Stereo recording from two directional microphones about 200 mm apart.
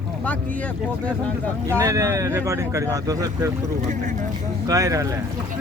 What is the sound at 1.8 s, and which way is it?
Speech, 15° right (ahead or behind).